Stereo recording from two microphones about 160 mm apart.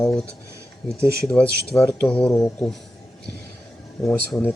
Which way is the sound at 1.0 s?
20° right (ahead or behind).